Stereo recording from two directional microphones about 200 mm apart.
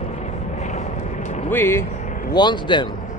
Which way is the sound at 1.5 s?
10° left (ahead or behind).